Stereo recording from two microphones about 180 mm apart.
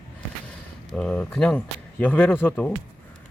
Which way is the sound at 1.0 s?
5° left (ahead or behind).